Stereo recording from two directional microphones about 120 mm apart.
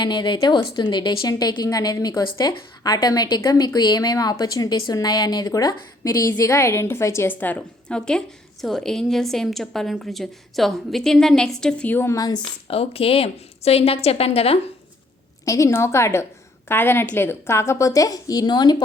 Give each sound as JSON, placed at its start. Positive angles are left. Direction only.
{"t": 0.0, "sound": "a woman's voice", "side_deg": 40}
{"t": 12.1, "sound": "a woman's voice", "side_deg": 30}
{"t": 12.6, "sound": "a woman's voice", "side_deg": 55}
{"t": 15.4, "sound": "a woman's voice", "side_deg": 25}